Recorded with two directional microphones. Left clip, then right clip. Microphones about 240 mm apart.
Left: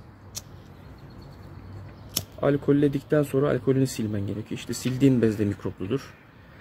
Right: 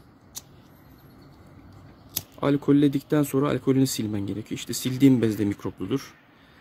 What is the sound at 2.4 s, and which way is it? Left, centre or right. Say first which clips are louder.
Speech: right 1 dB; right.